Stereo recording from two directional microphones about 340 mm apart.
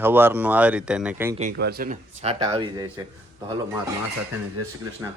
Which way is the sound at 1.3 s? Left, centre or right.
Right.